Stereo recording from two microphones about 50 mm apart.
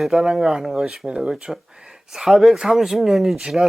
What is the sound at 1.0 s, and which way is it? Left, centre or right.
Speech, centre.